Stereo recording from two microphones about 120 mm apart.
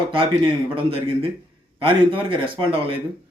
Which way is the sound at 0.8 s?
50° right (ahead or behind).